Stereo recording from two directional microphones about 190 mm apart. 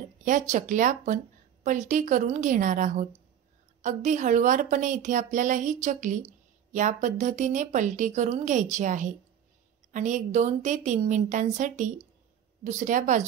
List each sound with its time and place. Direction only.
0.2 s a woman's voice: 45° right (ahead or behind)